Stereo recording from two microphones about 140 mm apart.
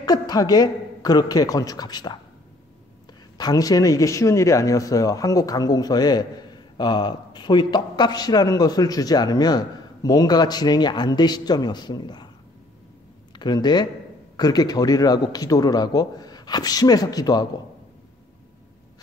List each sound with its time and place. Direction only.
0.0 s speech: 30° left (ahead or behind)
3.3 s speech: 25° left (ahead or behind)
13.3 s speech: 30° left (ahead or behind)